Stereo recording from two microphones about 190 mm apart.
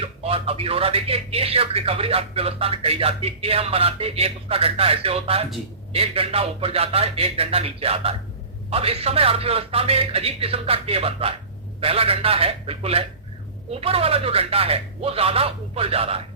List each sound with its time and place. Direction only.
0.0 s speech: 30° right (ahead or behind)